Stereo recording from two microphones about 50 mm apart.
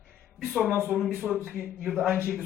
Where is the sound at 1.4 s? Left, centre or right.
Right.